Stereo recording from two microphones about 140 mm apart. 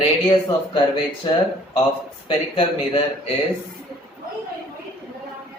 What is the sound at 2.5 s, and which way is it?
Speech, 40° left (ahead or behind).